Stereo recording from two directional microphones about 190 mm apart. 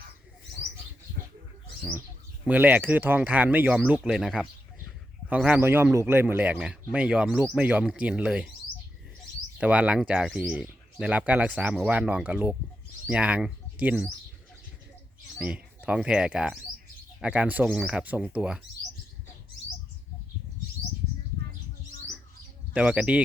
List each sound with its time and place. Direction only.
1.2 s bird: 50° right (ahead or behind)
2.5 s speech: 10° right (ahead or behind)
9.6 s speech: 5° right (ahead or behind)
15.4 s speech: 5° right (ahead or behind)
22.7 s speech: 5° right (ahead or behind)